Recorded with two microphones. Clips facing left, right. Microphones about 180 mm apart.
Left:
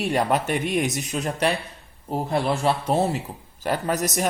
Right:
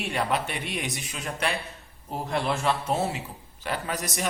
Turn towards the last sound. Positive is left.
turn(degrees=40)  # may be behind; listen again after turning